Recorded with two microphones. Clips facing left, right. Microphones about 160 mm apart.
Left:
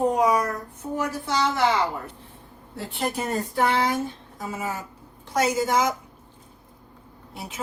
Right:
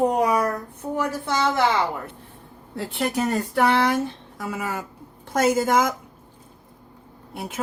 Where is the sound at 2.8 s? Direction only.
70° right (ahead or behind).